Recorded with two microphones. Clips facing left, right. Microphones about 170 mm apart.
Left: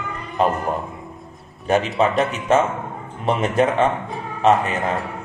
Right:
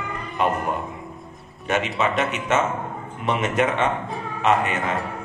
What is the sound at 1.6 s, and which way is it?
A man's voice, 35° left (ahead or behind).